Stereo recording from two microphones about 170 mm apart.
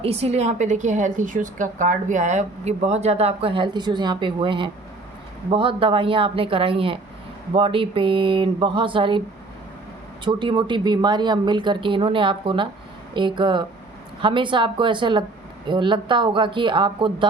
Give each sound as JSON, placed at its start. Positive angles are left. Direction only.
{"t": 0.0, "sound": "a woman's voice", "side_deg": -35}
{"t": 10.2, "sound": "speech", "side_deg": -30}